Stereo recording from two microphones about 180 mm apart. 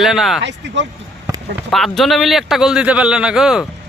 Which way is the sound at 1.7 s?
Centre (ahead or behind).